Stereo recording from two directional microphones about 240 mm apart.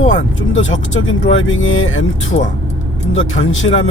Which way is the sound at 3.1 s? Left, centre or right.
Left.